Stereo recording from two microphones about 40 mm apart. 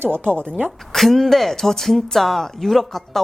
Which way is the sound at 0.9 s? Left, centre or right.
Centre.